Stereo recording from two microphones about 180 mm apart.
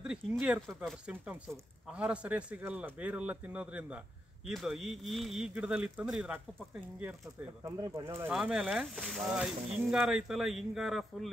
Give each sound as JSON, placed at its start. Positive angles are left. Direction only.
{"t": 0.0, "sound": "speech", "side_deg": -5}
{"t": 7.6, "sound": "speech", "side_deg": -15}
{"t": 8.3, "sound": "speech", "side_deg": -5}